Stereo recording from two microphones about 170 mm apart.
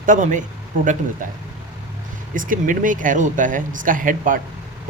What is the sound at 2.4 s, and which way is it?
Speech, 50° right (ahead or behind).